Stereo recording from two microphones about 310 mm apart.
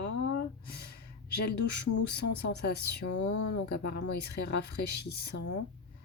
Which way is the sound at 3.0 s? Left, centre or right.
Left.